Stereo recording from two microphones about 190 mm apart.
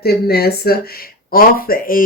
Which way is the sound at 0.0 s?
55° left (ahead or behind).